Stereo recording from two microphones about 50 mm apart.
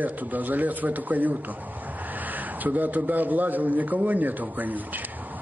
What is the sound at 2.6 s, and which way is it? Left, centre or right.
A man's voice, right.